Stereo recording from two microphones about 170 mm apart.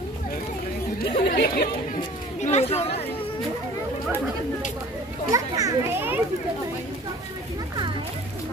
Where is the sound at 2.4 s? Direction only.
40° left (ahead or behind).